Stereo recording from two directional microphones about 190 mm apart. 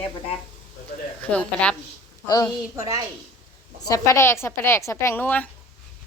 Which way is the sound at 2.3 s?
20° left (ahead or behind).